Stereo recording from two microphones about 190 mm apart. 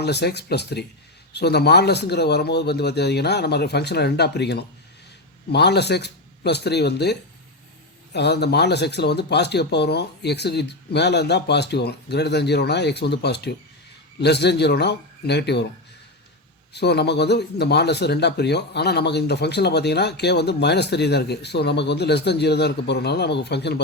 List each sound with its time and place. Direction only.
0.0 s speech: 60° left (ahead or behind)
16.7 s speech: 60° left (ahead or behind)